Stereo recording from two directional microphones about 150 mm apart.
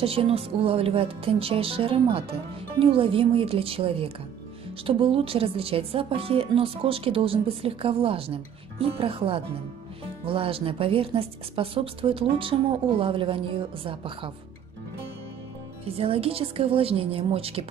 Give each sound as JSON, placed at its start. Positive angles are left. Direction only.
{"t": 0.0, "sound": "speech", "side_deg": -40}
{"t": 15.9, "sound": "speech", "side_deg": -40}